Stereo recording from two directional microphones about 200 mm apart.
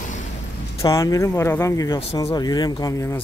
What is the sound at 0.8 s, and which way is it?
Speech, 15° left (ahead or behind).